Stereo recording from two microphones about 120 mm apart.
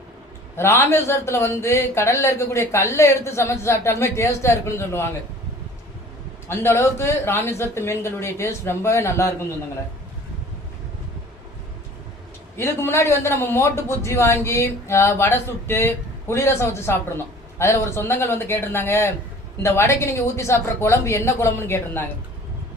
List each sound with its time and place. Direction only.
0.5 s a man's voice: 20° left (ahead or behind)
6.5 s a man's voice: 20° left (ahead or behind)
12.5 s a man's voice: 20° left (ahead or behind)